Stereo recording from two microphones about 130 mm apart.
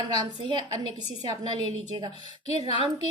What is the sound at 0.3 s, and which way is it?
Speech, 35° right (ahead or behind).